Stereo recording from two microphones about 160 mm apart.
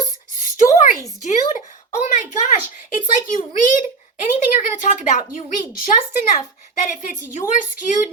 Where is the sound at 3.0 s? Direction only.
55° left (ahead or behind).